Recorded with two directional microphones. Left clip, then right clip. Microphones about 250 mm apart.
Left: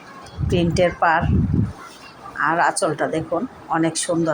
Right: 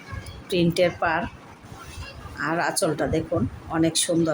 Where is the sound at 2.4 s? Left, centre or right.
Centre.